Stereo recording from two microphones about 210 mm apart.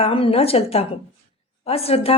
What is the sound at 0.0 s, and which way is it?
Speech, 25° left (ahead or behind).